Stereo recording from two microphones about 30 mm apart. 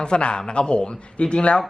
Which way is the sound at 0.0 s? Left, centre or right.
Left.